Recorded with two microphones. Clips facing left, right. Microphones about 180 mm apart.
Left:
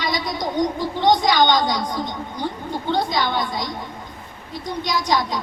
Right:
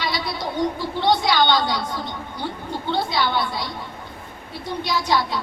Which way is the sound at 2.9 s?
15° left (ahead or behind).